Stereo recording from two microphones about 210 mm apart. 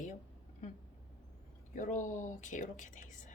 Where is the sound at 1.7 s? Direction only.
35° left (ahead or behind).